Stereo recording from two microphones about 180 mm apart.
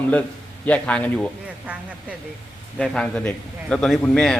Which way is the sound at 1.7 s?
10° right (ahead or behind).